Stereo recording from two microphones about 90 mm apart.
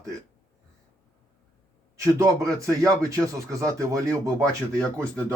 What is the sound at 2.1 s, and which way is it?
Speech, 35° right (ahead or behind).